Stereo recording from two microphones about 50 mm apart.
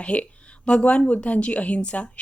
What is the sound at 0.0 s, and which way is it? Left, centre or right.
Speech, left.